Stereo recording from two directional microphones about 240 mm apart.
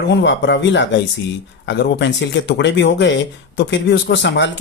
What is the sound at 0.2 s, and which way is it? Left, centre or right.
Speech, left.